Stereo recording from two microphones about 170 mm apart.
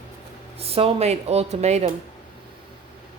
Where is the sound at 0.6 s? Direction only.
35° right (ahead or behind).